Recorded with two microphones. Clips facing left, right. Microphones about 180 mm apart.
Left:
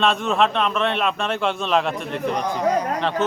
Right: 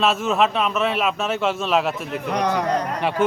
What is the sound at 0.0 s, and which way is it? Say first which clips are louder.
Speech: even; 5° right (ahead or behind).